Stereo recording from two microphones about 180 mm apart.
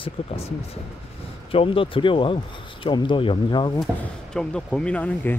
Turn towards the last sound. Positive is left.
turn(degrees=10)  # may be behind; listen again after turning